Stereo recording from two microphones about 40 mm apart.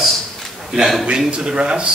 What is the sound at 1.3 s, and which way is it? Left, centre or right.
Speech, right.